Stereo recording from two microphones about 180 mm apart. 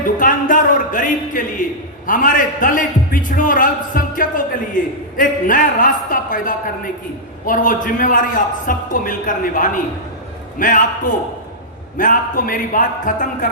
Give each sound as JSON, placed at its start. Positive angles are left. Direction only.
{"t": 0.0, "sound": "music", "side_deg": 45}
{"t": 2.0, "sound": "a man's voice", "side_deg": 45}